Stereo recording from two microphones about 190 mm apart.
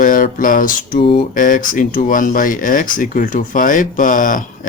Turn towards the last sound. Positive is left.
turn(degrees=45)  # may be behind; listen again after turning